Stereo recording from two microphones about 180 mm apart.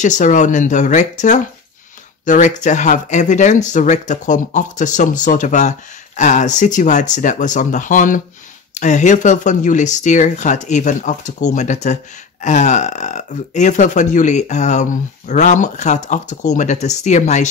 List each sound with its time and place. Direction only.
0.0 s speech: 45° left (ahead or behind)